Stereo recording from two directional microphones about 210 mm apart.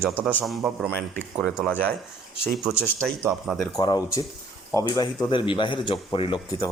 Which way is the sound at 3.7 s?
20° left (ahead or behind).